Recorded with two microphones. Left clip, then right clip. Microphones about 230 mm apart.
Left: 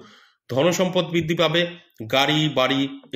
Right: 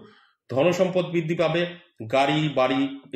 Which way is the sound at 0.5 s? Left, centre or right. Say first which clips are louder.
Left 1 dB; left.